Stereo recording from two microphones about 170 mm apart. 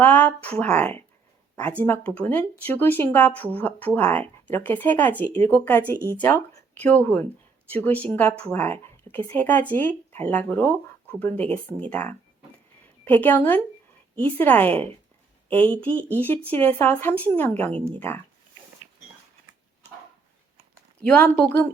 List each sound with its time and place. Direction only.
0.0 s a woman's voice: 10° left (ahead or behind)
21.0 s speech: 10° left (ahead or behind)